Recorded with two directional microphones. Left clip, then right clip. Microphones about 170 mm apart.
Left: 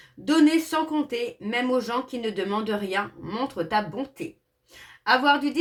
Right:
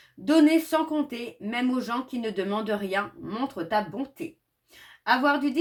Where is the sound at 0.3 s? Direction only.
30° right (ahead or behind).